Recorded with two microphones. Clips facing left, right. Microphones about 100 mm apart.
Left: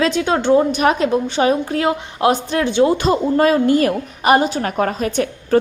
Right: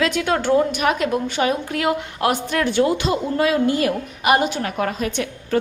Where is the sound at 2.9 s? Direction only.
45° left (ahead or behind).